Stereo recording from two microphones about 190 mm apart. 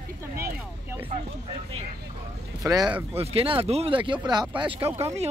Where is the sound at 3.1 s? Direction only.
30° right (ahead or behind).